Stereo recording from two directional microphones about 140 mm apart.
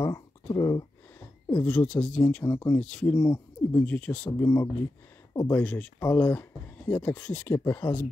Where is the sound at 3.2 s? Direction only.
20° left (ahead or behind).